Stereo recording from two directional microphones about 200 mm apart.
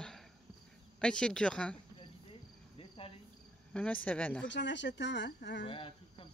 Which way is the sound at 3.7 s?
5° left (ahead or behind).